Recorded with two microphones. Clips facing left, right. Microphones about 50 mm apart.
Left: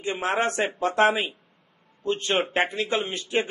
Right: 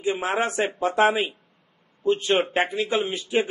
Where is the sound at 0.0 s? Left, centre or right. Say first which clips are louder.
Right 2 dB; centre.